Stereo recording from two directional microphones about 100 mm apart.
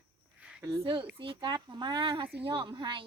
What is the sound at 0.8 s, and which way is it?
Speech, 60° right (ahead or behind).